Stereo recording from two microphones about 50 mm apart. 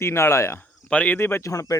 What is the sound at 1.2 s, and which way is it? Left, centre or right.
Speech, left.